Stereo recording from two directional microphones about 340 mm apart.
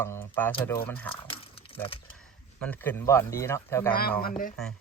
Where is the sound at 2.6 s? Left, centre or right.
Centre.